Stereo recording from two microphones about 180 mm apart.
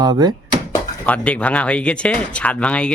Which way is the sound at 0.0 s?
20° right (ahead or behind).